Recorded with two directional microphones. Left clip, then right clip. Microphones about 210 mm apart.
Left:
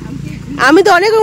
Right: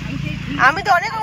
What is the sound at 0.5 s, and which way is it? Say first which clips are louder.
Speech: left 7 dB; 30° left (ahead or behind).